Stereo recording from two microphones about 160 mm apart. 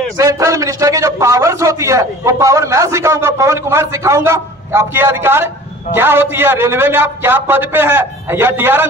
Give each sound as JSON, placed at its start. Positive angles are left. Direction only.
{"t": 0.2, "sound": "a man's voice", "side_deg": -20}